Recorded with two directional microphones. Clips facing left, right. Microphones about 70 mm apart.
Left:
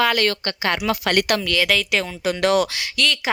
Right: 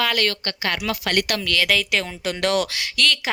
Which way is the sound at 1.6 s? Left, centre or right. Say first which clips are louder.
Left 1 dB; centre.